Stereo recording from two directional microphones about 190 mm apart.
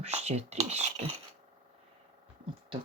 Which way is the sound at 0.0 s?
35° right (ahead or behind).